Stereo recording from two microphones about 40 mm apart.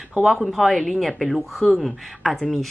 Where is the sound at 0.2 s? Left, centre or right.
Centre.